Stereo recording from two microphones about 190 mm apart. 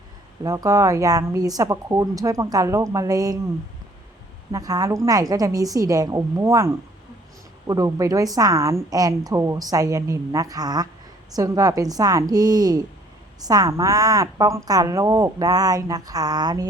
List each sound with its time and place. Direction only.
0.4 s a woman's voice: 15° right (ahead or behind)
4.5 s a woman's voice: 20° right (ahead or behind)
7.7 s a woman's voice: 20° right (ahead or behind)